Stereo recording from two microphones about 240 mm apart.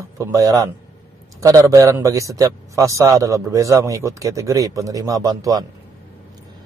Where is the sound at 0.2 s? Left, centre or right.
Centre.